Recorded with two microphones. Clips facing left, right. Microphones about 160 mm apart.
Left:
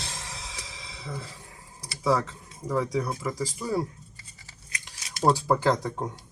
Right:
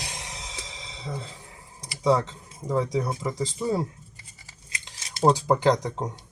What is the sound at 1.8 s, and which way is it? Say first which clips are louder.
Typing: right 3 dB; 20° right (ahead or behind).